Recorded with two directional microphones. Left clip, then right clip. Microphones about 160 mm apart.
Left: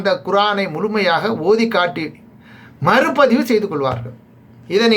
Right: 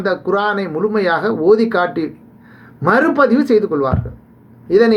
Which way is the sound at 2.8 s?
5° left (ahead or behind).